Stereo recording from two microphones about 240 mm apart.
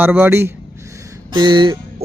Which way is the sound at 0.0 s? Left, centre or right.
Centre.